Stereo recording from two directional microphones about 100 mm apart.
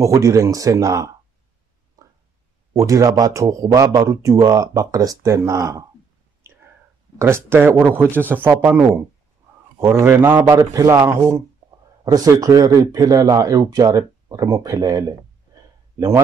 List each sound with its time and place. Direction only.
0.0 s speech: 30° right (ahead or behind)
2.0 s a sound: 35° right (ahead or behind)
2.7 s speech: 30° right (ahead or behind)
6.4 s whispering: 25° right (ahead or behind)
7.2 s speech: 25° right (ahead or behind)
10.5 s speech: 35° right (ahead or behind)
12.0 s speech: 40° right (ahead or behind)